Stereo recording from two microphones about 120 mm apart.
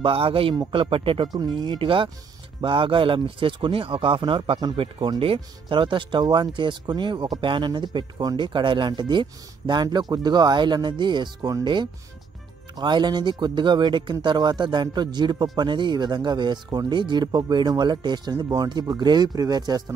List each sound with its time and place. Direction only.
0.0 s speech: 50° right (ahead or behind); by 19.8 s 35° right (ahead or behind)